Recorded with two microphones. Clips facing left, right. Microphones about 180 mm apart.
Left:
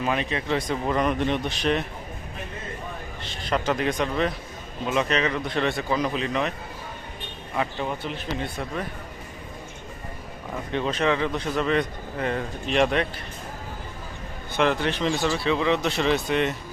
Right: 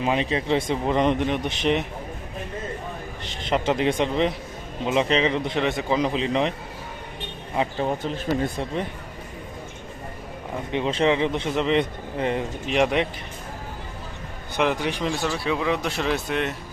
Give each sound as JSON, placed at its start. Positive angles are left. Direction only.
{"t": 0.0, "sound": "speech", "side_deg": -25}
{"t": 3.2, "sound": "speech", "side_deg": -25}
{"t": 7.8, "sound": "speech", "side_deg": -40}
{"t": 10.7, "sound": "speech", "side_deg": -20}
{"t": 14.5, "sound": "speech", "side_deg": -10}